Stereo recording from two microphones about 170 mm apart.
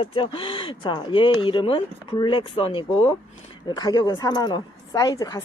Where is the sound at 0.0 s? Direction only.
30° left (ahead or behind).